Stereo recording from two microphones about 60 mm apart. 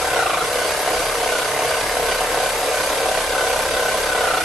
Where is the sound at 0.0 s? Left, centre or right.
Centre.